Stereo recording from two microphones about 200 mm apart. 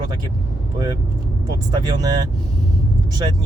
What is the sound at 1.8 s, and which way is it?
Speech, 20° right (ahead or behind).